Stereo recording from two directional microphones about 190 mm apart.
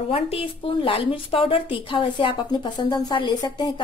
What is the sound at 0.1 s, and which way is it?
Speech, 30° left (ahead or behind).